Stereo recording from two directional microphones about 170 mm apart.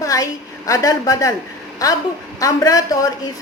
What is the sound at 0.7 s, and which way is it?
Speech, 20° left (ahead or behind).